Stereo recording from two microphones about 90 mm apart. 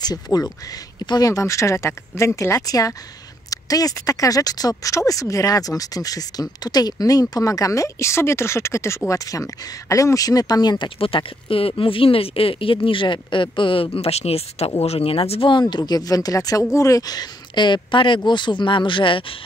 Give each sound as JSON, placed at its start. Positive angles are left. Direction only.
{"t": 0.0, "sound": "speech", "side_deg": 45}
{"t": 1.3, "sound": "speech", "side_deg": 35}
{"t": 11.0, "sound": "speech", "side_deg": 85}